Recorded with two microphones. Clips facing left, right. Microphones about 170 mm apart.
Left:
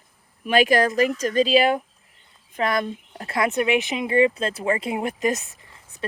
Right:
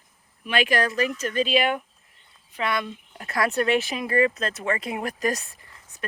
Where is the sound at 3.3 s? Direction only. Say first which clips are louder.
Left 1 dB; 20° left (ahead or behind).